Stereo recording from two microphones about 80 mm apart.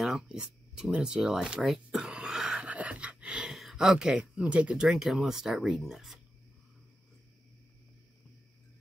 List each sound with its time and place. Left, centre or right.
0.0 s speech: centre